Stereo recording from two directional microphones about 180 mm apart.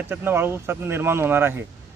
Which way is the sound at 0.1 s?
10° right (ahead or behind).